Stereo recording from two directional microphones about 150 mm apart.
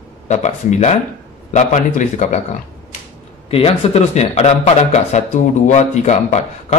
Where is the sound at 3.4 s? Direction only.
40° left (ahead or behind).